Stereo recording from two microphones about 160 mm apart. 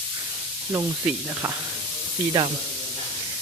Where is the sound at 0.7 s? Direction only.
15° right (ahead or behind).